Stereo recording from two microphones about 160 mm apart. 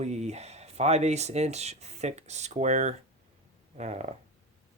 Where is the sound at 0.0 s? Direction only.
45° right (ahead or behind).